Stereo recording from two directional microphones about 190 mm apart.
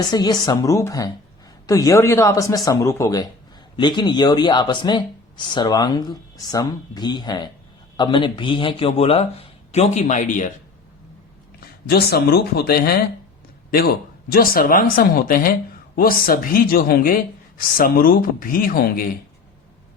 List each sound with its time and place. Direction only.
0.1 s a man's voice: 20° left (ahead or behind); by 10.5 s 40° left (ahead or behind)
11.9 s speech: 55° left (ahead or behind)